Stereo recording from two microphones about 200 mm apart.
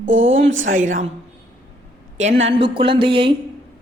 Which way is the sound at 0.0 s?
70° right (ahead or behind).